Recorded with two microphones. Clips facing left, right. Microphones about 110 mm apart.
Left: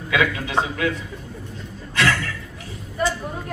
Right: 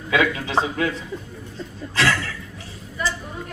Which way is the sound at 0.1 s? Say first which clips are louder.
Right 1 dB; 30° right (ahead or behind).